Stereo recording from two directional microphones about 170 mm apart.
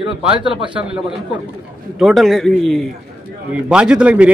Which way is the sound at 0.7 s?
5° right (ahead or behind).